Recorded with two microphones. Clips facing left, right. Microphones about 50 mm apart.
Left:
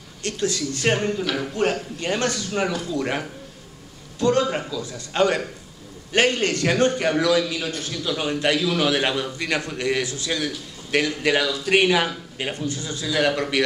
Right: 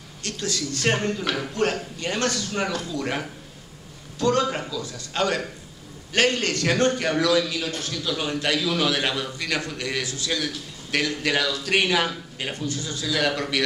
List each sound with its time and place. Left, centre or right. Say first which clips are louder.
0.2 s speech: left 4 dB; left
0.8 s speech: left 2 dB; centre
2.0 s a man's voice: left 2 dB; centre
4.4 s a man's voice: left 2 dB; centre
4.8 s a man's voice: left 5 dB; left
10.3 s a man's voice: left 1 dB; centre
12.6 s a man's voice: left 1 dB; left